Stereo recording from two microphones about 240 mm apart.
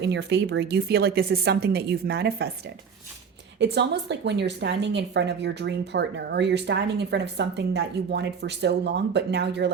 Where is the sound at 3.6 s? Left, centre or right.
Right.